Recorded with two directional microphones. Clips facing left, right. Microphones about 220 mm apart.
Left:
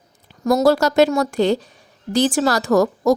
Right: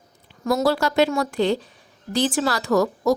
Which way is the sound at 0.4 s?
45° left (ahead or behind).